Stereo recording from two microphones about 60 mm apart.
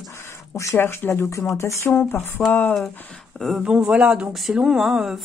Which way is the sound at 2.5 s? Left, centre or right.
Left.